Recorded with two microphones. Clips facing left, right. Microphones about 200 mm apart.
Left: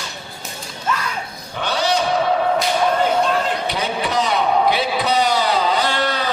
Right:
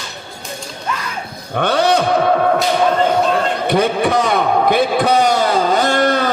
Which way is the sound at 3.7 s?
55° right (ahead or behind).